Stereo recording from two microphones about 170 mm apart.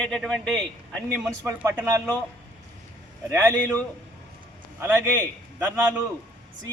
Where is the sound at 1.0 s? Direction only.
10° right (ahead or behind).